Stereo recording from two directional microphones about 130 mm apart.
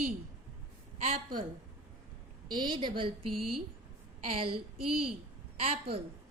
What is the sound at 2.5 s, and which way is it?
A woman's voice, 35° right (ahead or behind).